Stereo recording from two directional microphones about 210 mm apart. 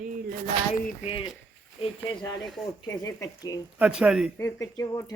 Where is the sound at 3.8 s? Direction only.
5° right (ahead or behind).